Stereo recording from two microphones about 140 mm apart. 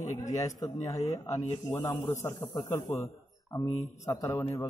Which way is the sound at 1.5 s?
20° left (ahead or behind).